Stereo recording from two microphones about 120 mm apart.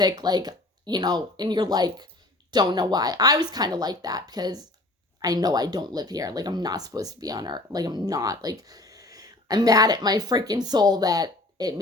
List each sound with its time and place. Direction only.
0.0 s speech: 35° right (ahead or behind)